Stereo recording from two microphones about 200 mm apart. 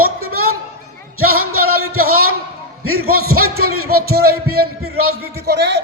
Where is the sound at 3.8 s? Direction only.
50° right (ahead or behind).